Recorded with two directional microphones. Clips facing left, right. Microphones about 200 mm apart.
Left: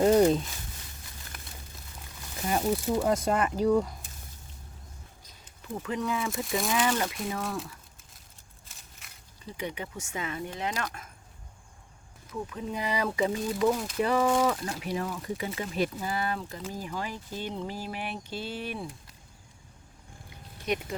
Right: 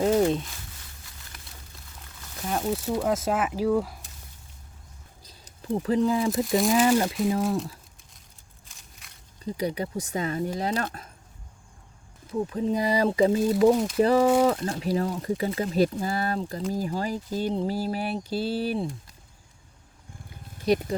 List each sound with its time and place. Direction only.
0.0 s a sound: centre (ahead or behind)
2.3 s speech: centre (ahead or behind)
5.2 s a sound: 35° right (ahead or behind)
6.7 s speech: 35° right (ahead or behind)
7.4 s speech: centre (ahead or behind)
8.6 s a sound: centre (ahead or behind)
9.4 s speech: 35° right (ahead or behind)
12.3 s speech: 30° right (ahead or behind)
20.7 s speech: 35° right (ahead or behind)